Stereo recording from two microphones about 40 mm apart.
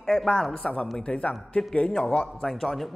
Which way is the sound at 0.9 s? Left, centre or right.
Left.